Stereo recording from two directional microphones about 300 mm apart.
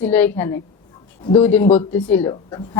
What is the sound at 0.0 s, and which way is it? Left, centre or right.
Speech, centre.